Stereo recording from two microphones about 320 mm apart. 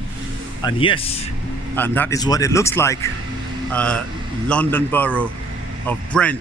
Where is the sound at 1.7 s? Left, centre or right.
Centre.